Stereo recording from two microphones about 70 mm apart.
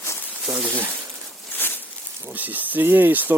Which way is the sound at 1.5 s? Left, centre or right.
Left.